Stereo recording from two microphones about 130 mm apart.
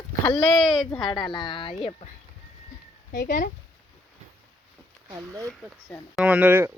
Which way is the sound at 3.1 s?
90° left.